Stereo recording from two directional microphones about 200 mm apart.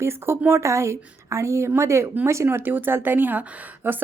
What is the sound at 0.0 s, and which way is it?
A woman's voice, 15° right (ahead or behind).